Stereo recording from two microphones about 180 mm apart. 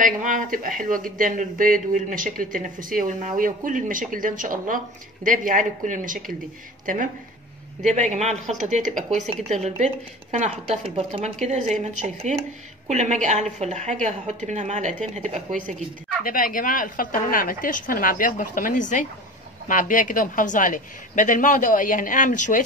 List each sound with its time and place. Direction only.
0.0 s speech: 45° right (ahead or behind)
7.8 s a woman's voice: 40° right (ahead or behind)
15.3 s a woman's voice: 5° left (ahead or behind)
16.3 s a woman's voice: 50° left (ahead or behind)